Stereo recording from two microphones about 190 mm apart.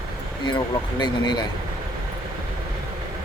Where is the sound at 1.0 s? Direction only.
25° left (ahead or behind).